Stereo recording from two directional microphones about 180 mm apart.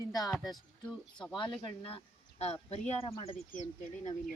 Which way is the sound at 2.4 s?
35° left (ahead or behind).